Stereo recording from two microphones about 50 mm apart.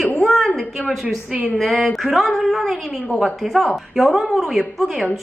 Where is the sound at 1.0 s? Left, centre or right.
Right.